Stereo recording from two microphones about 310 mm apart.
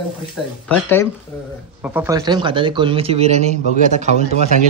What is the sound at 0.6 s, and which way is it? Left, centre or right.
Speech, centre.